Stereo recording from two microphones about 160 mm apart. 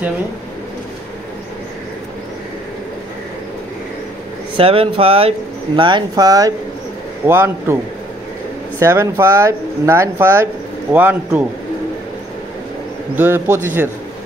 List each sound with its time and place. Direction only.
4.6 s speech: 35° right (ahead or behind); by 11.4 s 10° right (ahead or behind)
13.1 s speech: 15° right (ahead or behind)